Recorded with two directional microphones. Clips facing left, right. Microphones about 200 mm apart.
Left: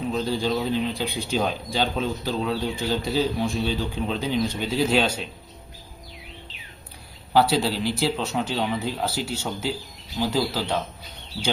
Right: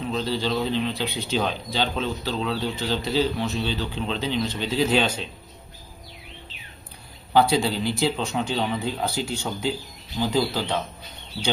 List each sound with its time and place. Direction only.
0.3 s speech: 10° left (ahead or behind)
7.3 s a man's voice: 5° left (ahead or behind)